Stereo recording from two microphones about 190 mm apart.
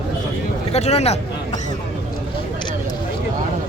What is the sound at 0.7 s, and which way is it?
Speech, 35° left (ahead or behind).